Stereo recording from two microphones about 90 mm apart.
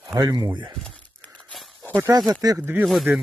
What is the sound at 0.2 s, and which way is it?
Speech, 45° right (ahead or behind).